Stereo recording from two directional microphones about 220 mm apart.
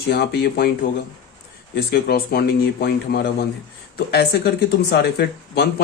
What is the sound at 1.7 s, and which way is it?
Speech, 45° left (ahead or behind).